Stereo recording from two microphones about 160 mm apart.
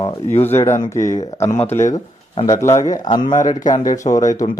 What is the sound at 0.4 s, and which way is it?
Speech, 15° left (ahead or behind).